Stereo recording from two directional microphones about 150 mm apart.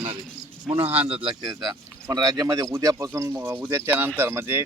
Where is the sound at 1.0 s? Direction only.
35° right (ahead or behind); by 4.6 s 15° right (ahead or behind).